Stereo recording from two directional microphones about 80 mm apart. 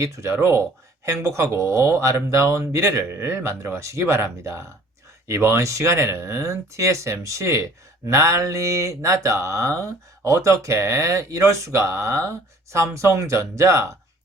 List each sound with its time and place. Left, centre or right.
0.0 s speech: right